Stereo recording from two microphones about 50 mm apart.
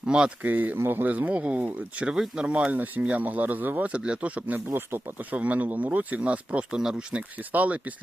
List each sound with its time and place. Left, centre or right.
0.1 s speech: centre
0.4 s a man's voice: right
1.1 s speech: right
2.0 s speech: centre; by 3.8 s right
3.8 s speech: right
7.2 s speech: right